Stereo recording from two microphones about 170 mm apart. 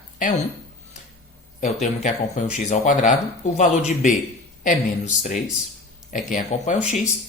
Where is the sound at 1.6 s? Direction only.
40° left (ahead or behind).